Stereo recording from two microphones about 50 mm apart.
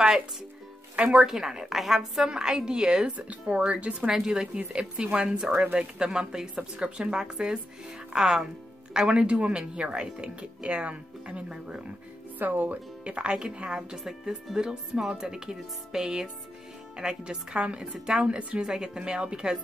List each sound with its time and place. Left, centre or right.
0.9 s a woman's voice: centre
3.1 s speech: right
4.1 s a woman's voice: centre
4.9 s a woman's voice: right
12.4 s speech: right
13.0 s a woman's voice: right